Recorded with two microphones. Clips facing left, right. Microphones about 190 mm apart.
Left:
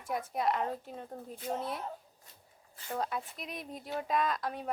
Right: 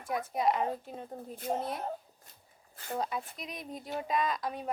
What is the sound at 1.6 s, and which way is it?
Speech, 45° right (ahead or behind).